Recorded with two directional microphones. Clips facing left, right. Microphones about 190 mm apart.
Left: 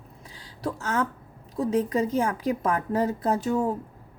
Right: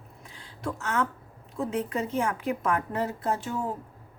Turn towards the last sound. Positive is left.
turn(degrees=40)  # may be behind; listen again after turning